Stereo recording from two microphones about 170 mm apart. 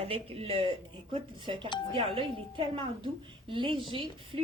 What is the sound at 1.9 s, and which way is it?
A woman's voice, 30° right (ahead or behind).